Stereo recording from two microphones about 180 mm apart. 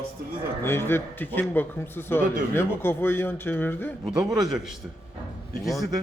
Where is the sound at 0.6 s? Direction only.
15° left (ahead or behind).